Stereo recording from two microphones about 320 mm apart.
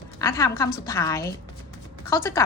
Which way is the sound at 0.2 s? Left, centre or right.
Centre.